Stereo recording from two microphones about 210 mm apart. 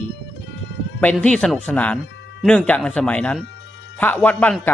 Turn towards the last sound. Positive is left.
turn(degrees=5)  # may be behind; listen again after turning